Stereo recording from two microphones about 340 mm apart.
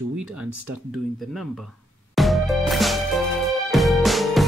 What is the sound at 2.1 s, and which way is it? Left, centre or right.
Music, centre.